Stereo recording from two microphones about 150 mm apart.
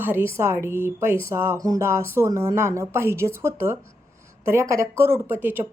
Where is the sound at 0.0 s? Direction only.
15° right (ahead or behind).